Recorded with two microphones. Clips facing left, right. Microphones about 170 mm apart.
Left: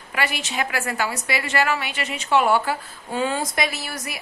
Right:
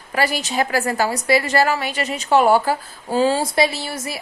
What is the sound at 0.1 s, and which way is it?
A woman's voice, 35° right (ahead or behind).